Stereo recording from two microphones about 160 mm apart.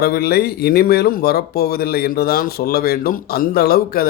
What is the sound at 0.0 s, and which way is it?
Speech, 75° left (ahead or behind).